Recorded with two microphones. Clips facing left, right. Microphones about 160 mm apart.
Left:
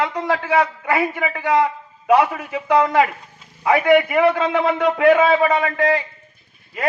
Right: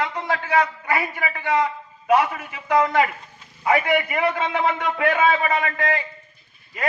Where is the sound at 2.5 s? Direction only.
30° left (ahead or behind).